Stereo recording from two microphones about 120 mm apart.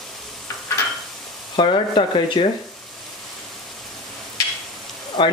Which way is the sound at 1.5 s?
40° left (ahead or behind).